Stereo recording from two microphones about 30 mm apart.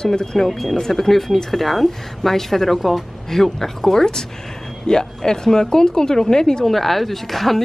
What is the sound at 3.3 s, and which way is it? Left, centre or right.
Speech, centre.